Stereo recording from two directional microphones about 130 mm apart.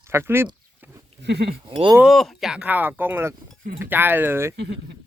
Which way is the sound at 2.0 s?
Centre (ahead or behind).